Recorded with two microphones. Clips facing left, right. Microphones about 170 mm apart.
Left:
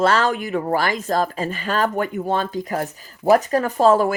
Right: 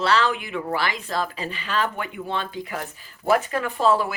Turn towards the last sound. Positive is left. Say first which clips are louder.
# left 5 dB
turn(degrees=45)  # may be behind; listen again after turning